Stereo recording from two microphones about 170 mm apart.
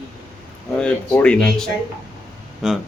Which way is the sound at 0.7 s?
5° left (ahead or behind).